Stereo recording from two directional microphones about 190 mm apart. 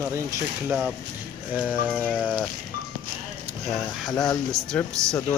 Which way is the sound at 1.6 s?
5° left (ahead or behind).